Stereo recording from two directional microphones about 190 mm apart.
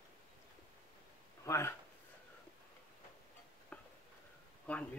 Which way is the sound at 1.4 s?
15° left (ahead or behind).